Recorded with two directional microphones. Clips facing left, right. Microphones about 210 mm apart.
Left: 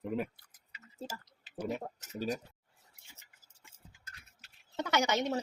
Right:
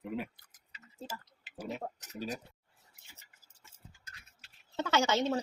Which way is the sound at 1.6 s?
45° left (ahead or behind).